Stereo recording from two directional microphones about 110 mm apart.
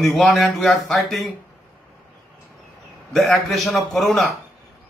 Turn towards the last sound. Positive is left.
turn(degrees=0)  # may be behind; listen again after turning